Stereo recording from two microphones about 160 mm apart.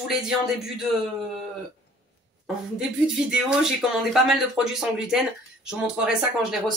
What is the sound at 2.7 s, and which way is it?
A woman's voice, 5° right (ahead or behind).